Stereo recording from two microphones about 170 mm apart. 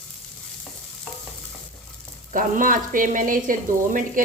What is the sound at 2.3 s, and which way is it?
Sizzle, 50° right (ahead or behind).